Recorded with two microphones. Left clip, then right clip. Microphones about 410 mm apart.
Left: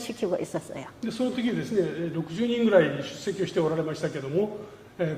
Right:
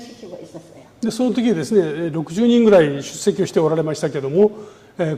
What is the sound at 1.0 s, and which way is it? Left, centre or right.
A man's voice, right.